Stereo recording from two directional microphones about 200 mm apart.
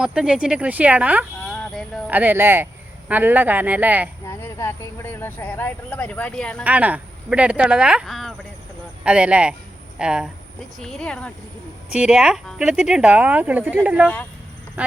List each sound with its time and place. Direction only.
0.0 s speech: 5° right (ahead or behind)
1.5 s a sound: centre (ahead or behind)
2.0 s speech: 10° right (ahead or behind)
4.3 s speech: 15° left (ahead or behind)
6.7 s speech: 5° right (ahead or behind)